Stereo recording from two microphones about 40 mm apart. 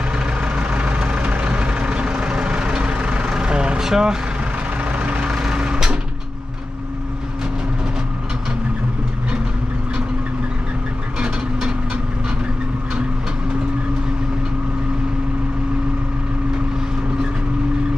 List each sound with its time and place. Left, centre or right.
0.4 s vehicle: right
3.8 s speech: centre
4.9 s vehicle: right
5.2 s vehicle: centre